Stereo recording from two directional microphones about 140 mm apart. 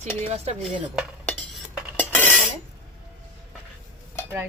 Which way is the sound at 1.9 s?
15° left (ahead or behind).